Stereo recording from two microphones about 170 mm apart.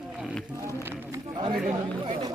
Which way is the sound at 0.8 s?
15° right (ahead or behind).